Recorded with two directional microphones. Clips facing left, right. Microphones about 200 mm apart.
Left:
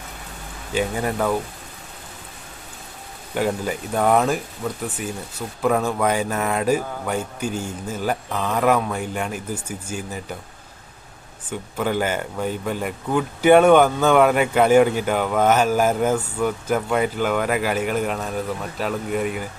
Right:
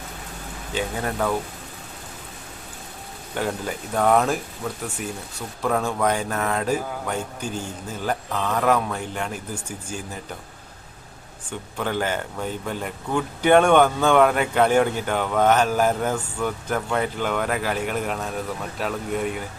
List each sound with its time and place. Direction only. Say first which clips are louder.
0.7 s speech: left 4 dB; 10° left (ahead or behind)
3.3 s speech: left 4 dB; 5° left (ahead or behind)
11.8 s speech: left 3 dB; 10° left (ahead or behind)